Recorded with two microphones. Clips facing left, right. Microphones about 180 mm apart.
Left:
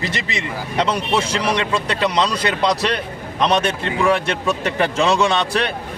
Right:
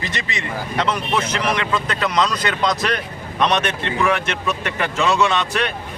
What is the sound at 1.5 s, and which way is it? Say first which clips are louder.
A man's voice: left 2 dB; 30° left (ahead or behind).